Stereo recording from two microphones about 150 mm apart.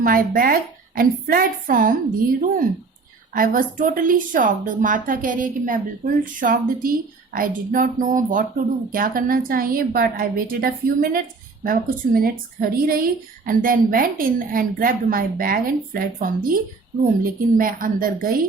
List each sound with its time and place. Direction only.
0.0 s a woman's voice: 70° right (ahead or behind)
3.3 s a woman's voice: 70° right (ahead or behind)
6.4 s a woman's voice: 65° right (ahead or behind)
17.6 s a woman's voice: 65° right (ahead or behind)